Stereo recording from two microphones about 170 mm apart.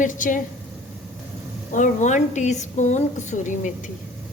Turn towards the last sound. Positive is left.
turn(degrees=45)  # may be behind; listen again after turning